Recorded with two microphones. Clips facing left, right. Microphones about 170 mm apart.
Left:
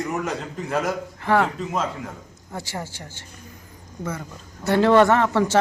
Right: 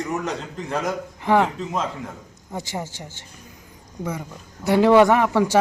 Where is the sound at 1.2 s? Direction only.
15° right (ahead or behind).